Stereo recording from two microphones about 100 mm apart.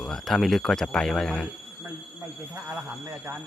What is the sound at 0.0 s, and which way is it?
Speech, centre (ahead or behind).